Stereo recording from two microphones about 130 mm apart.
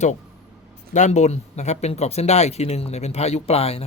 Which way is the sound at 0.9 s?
65° left (ahead or behind).